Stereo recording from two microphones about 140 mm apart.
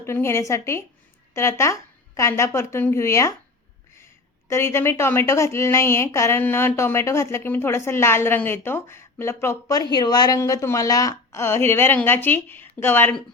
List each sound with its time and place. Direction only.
0.0 s a woman's voice: 20° left (ahead or behind)
4.4 s a woman's voice: 20° left (ahead or behind)